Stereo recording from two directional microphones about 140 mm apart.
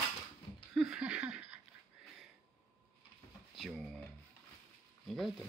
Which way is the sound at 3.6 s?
Centre (ahead or behind).